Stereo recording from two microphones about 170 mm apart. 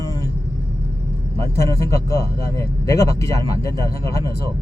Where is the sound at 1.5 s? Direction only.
15° left (ahead or behind).